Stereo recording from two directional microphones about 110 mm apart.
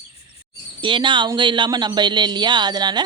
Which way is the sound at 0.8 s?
45° right (ahead or behind).